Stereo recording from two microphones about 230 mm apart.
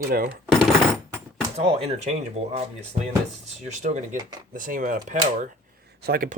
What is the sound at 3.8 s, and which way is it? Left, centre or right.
Speech, right.